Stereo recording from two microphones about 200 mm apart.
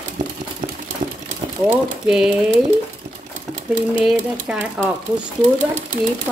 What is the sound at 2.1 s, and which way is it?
Speech, 5° right (ahead or behind).